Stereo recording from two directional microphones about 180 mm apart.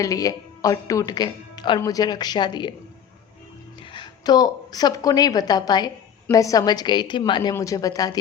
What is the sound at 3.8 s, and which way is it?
A woman's voice, 25° left (ahead or behind).